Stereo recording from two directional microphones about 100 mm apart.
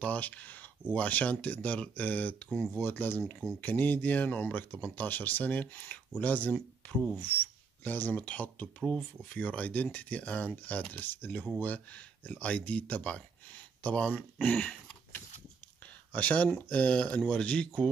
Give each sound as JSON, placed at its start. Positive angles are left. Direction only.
{"t": 0.0, "sound": "speech", "side_deg": 15}
{"t": 16.1, "sound": "speech", "side_deg": 15}